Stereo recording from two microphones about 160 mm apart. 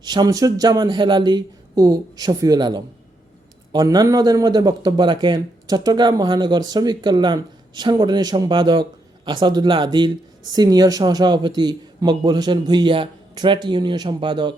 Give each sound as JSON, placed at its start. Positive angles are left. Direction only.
{"t": 0.0, "sound": "speech", "side_deg": -25}